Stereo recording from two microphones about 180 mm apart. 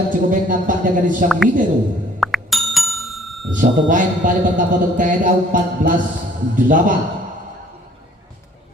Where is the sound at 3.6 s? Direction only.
45° right (ahead or behind).